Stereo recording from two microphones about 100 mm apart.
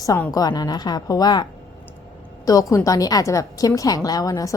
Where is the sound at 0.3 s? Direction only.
40° left (ahead or behind).